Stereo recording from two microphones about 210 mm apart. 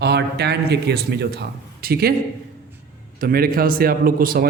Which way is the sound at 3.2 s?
45° right (ahead or behind).